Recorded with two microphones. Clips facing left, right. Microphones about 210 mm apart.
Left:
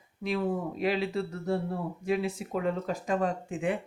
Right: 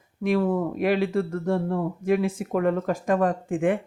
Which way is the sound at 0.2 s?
50° right (ahead or behind).